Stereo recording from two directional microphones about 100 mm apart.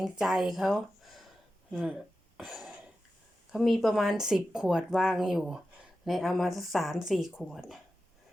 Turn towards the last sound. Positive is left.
turn(degrees=0)  # may be behind; listen again after turning